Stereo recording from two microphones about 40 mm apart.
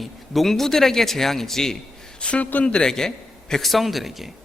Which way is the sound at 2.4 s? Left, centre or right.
Left.